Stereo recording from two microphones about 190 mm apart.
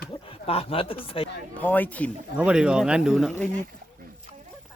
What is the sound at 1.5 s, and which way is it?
Speech, 10° left (ahead or behind).